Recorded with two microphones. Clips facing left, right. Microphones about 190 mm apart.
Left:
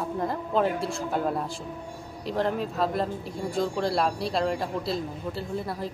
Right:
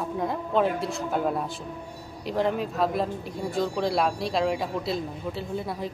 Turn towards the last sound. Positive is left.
turn(degrees=0)  # may be behind; listen again after turning